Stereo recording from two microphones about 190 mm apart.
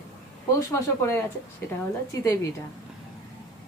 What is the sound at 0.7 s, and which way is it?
Speech, 15° left (ahead or behind).